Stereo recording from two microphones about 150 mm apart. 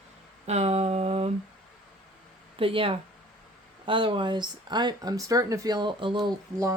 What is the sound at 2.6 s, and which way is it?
Speech, 40° right (ahead or behind).